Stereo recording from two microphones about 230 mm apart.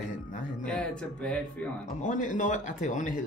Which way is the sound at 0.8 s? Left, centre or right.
Centre.